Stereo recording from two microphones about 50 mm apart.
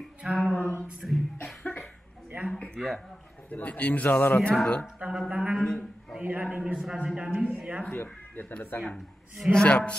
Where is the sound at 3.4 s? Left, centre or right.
Left.